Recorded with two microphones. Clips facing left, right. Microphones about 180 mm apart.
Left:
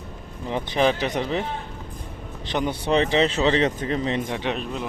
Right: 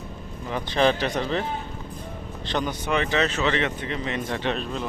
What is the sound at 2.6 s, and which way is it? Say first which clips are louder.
Speech: left 7 dB; 30° left (ahead or behind).